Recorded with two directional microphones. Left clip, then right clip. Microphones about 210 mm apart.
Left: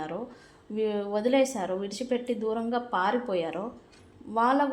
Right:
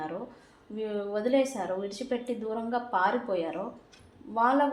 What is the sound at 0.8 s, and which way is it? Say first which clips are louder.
A woman's voice: left 3 dB; 35° left (ahead or behind).